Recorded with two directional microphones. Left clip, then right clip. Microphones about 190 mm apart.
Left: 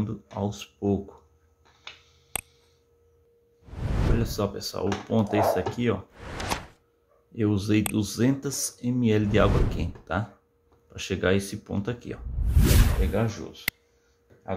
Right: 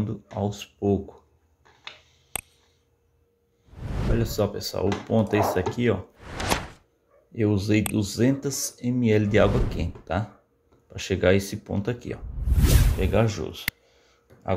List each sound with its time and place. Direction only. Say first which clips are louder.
0.0 s speech: right 2 dB; centre (ahead or behind)
2.3 s a sound: even; centre (ahead or behind)
3.6 s speech: left 1 dB; centre (ahead or behind)
13.0 s speech: right 5 dB; 25° right (ahead or behind)